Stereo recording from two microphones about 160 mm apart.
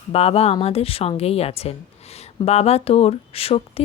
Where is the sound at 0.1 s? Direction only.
40° left (ahead or behind).